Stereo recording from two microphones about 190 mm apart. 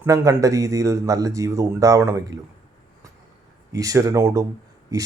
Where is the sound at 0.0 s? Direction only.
15° right (ahead or behind).